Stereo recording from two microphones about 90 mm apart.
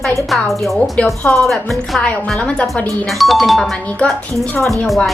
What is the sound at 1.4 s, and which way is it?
A woman's voice, centre (ahead or behind).